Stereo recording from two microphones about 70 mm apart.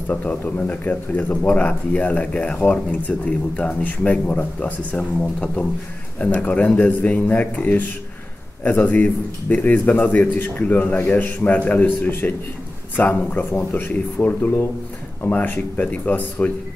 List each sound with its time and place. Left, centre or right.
0.1 s speech: left